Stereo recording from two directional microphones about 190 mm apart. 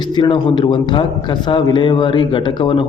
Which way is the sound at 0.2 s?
25° left (ahead or behind).